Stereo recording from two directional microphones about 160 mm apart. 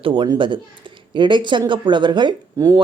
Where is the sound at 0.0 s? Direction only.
30° right (ahead or behind).